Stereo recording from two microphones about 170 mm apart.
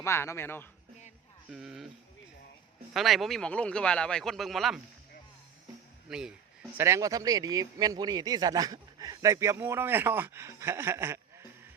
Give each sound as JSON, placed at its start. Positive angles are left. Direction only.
{"t": 0.0, "sound": "speech", "side_deg": 15}
{"t": 1.5, "sound": "speech", "side_deg": -5}
{"t": 2.9, "sound": "speech", "side_deg": 0}
{"t": 6.1, "sound": "speech", "side_deg": -5}